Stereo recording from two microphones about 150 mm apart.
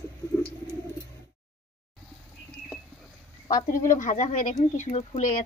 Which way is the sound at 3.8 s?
60° left (ahead or behind).